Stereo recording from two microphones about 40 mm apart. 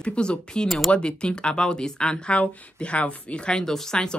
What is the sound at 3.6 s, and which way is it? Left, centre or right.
Speech, centre.